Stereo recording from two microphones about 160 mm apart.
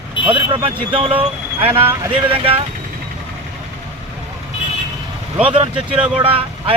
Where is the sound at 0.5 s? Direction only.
35° right (ahead or behind).